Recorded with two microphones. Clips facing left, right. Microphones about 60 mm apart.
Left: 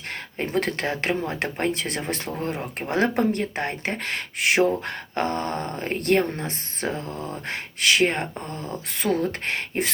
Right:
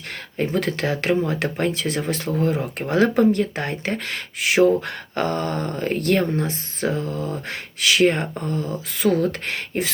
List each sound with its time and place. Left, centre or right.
0.3 s speech: left